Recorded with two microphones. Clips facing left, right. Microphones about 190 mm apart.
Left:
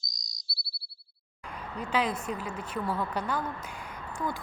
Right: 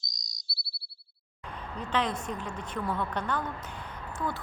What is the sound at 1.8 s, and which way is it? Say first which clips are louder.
Speech: left 1 dB; 10° left (ahead or behind).